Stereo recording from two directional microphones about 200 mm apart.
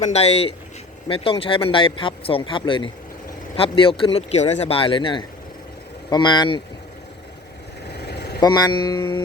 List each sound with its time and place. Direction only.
0.0 s speech: 30° left (ahead or behind)
8.4 s speech: 20° left (ahead or behind)